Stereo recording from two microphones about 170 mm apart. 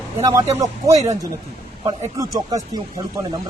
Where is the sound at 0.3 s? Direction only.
20° right (ahead or behind).